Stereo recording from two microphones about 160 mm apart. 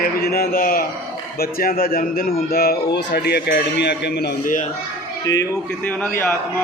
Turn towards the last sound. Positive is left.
turn(degrees=20)  # may be behind; listen again after turning